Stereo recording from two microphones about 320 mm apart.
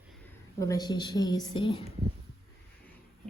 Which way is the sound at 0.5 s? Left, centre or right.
Centre.